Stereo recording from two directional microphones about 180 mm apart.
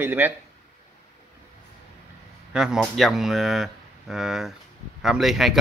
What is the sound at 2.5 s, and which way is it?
Speech, 5° right (ahead or behind).